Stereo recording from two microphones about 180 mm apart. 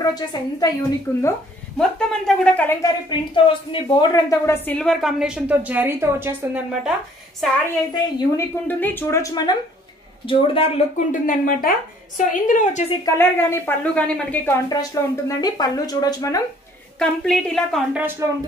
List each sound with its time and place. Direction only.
0.0 s a woman's voice: 20° left (ahead or behind)
2.9 s speech: 20° left (ahead or behind); by 6.9 s 10° right (ahead or behind)
7.9 s a woman's voice: 15° left (ahead or behind); by 10.7 s 30° left (ahead or behind)
11.1 s speech: 50° left (ahead or behind)
13.0 s a woman's voice: 15° left (ahead or behind)
17.0 s speech: 5° left (ahead or behind)